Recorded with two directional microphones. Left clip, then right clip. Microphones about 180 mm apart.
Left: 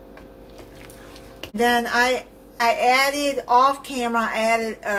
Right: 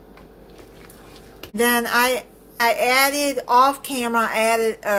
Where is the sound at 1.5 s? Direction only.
35° right (ahead or behind).